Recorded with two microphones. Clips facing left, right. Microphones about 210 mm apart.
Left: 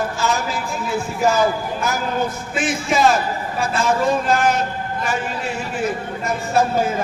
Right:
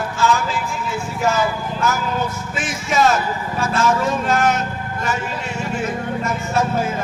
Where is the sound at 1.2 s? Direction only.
35° left (ahead or behind).